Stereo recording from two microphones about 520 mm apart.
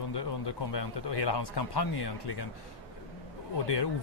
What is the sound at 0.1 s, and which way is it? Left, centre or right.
Speech, left.